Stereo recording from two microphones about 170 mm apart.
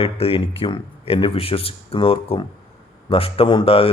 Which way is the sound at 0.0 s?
35° left (ahead or behind).